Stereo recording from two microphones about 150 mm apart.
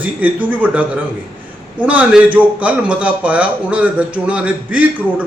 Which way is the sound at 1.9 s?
10° right (ahead or behind).